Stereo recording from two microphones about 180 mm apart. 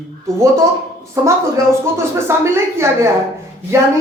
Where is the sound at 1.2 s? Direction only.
15° right (ahead or behind).